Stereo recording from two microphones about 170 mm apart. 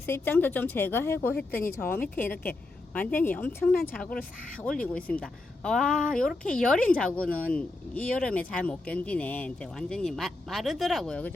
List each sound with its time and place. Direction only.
0.0 s a woman's voice: 10° left (ahead or behind)